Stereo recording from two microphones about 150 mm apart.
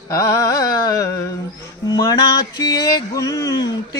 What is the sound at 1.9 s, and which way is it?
Music, 25° left (ahead or behind).